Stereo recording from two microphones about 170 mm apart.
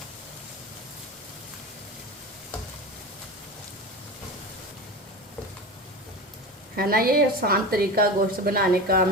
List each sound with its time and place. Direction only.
6.7 s a woman's voice: 60° right (ahead or behind)